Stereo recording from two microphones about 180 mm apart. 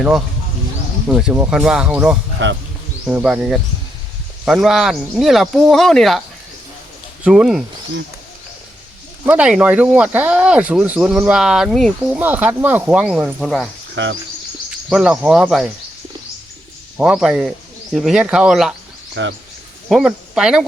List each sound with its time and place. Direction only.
1.0 s speech: 5° right (ahead or behind)
7.3 s speech: 5° right (ahead or behind)
9.2 s speech: 5° right (ahead or behind)
13.9 s speech: 80° right
14.8 s speech: centre (ahead or behind)
17.0 s speech: 5° right (ahead or behind)
19.2 s speech: 85° right
19.9 s speech: 5° right (ahead or behind)